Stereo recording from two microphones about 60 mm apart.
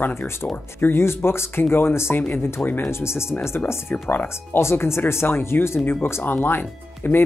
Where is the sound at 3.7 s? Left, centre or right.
Left.